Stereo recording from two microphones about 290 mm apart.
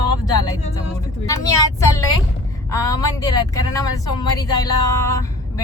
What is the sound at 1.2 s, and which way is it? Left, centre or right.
Speech, centre.